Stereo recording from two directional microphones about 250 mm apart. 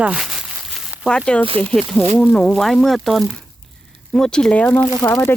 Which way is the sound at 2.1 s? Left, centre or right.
Centre.